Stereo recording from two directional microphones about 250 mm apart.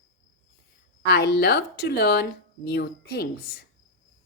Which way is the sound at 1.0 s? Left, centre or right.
Left.